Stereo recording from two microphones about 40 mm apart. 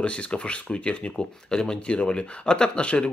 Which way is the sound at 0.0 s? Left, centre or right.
Left.